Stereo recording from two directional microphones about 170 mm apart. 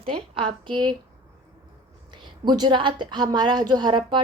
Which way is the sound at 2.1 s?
25° right (ahead or behind).